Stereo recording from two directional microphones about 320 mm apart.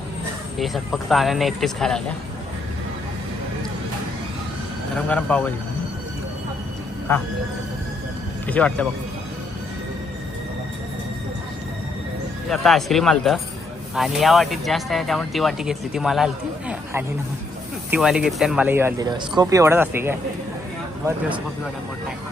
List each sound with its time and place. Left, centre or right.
0.6 s speech: centre
4.9 s speech: centre
7.1 s a man's voice: centre
8.4 s speech: centre
12.5 s speech: centre